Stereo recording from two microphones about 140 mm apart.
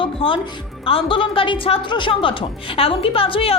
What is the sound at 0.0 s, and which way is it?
Music, 40° left (ahead or behind).